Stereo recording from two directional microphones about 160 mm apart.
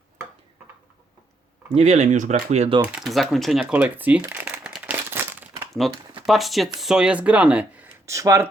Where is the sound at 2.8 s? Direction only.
5° right (ahead or behind).